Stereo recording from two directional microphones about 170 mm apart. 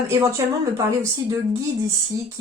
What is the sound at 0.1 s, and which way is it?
Speech, 15° right (ahead or behind).